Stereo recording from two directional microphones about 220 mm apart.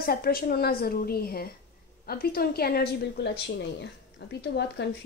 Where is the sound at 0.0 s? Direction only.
45° left (ahead or behind).